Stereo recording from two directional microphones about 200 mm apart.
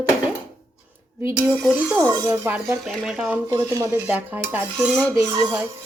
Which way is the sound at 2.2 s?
10° right (ahead or behind).